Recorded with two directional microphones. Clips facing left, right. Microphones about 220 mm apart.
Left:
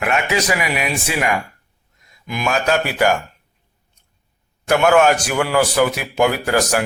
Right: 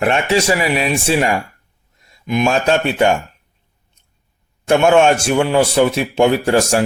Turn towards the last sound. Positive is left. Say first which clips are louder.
# right 4 dB
turn(degrees=-25)  # may be behind; listen again after turning